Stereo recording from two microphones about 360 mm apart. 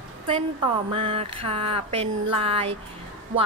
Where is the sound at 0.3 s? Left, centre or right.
Centre.